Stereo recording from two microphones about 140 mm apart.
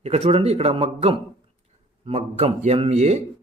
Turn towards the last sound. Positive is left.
turn(degrees=-50)  # may be behind; listen again after turning